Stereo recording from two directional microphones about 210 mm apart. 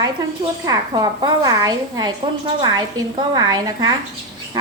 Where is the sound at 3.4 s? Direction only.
20° right (ahead or behind).